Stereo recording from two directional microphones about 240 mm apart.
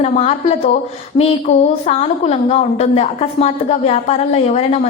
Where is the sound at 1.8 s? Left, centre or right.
Left.